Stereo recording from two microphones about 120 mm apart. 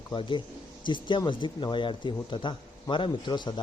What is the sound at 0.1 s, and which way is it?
Speech, 40° left (ahead or behind).